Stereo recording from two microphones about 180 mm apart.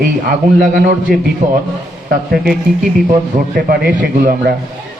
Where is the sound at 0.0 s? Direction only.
50° right (ahead or behind).